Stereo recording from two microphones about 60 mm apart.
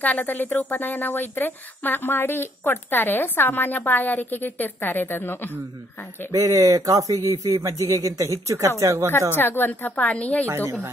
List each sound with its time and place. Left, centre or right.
0.0 s a woman's voice: left
6.3 s speech: right
7.2 s a man's voice: right
9.3 s a woman's voice: left
10.4 s a woman's voice: right